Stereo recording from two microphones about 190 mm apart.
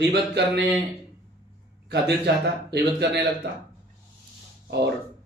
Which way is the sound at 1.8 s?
60° right (ahead or behind).